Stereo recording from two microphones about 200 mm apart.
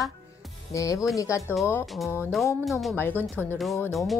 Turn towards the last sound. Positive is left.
turn(degrees=0)  # may be behind; listen again after turning